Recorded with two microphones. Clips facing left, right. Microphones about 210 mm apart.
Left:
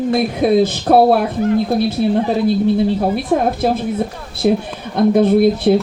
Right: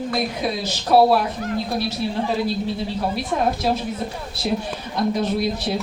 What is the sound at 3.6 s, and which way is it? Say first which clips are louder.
A woman's voice: left 6 dB; 55° left (ahead or behind).